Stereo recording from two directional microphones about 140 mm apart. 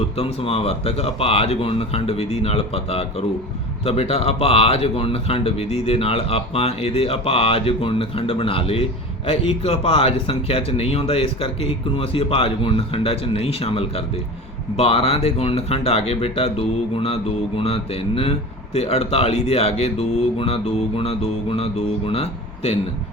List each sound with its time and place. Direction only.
0.0 s speech: 45° left (ahead or behind)